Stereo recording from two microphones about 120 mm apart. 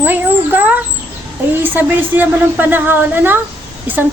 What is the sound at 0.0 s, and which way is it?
A woman's voice, 15° right (ahead or behind).